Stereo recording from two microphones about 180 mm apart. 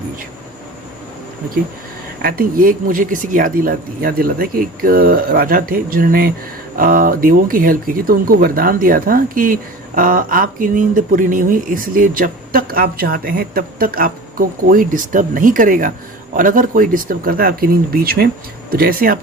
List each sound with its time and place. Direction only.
2.2 s speech: 55° right (ahead or behind)